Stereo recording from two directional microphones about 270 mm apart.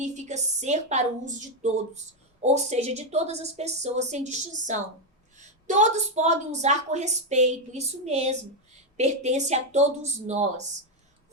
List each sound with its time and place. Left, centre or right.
0.0 s a woman's voice: right